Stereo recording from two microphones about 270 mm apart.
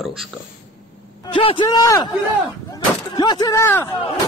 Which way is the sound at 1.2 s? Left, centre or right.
Centre.